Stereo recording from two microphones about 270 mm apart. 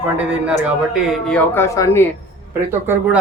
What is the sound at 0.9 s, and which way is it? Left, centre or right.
A man's voice, centre.